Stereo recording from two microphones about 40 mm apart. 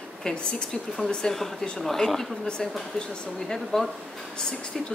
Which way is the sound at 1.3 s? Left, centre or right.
Centre.